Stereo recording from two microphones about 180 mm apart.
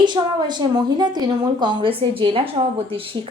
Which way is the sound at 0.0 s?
25° right (ahead or behind).